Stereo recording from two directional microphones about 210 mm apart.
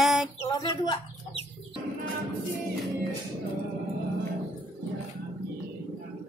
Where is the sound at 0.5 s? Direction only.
20° left (ahead or behind).